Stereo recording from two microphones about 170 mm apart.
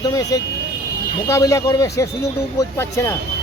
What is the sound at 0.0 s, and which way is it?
Speech, 20° left (ahead or behind).